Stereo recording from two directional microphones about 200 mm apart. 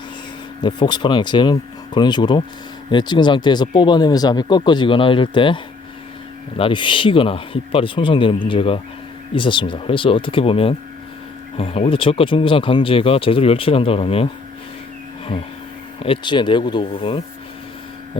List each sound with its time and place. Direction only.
0.6 s speech: 20° left (ahead or behind)
6.6 s speech: 25° left (ahead or behind)
16.0 s speech: 25° left (ahead or behind)